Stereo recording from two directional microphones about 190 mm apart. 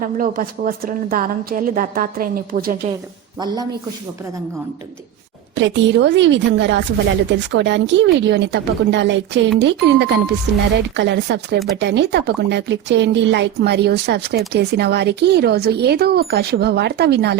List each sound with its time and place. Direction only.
0.0 s a woman's voice: 50° right (ahead or behind)
3.4 s a man's voice: 20° right (ahead or behind)
5.5 s a woman's voice: 70° right (ahead or behind)